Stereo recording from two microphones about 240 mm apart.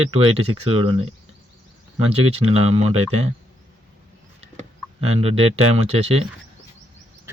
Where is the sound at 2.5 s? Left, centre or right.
Right.